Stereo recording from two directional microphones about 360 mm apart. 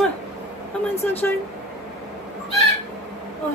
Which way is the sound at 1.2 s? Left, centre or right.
Centre.